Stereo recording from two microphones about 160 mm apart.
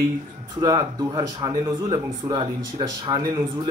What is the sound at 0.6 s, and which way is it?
A man's voice, 30° right (ahead or behind).